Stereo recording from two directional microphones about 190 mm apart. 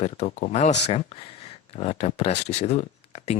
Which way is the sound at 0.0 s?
35° left (ahead or behind).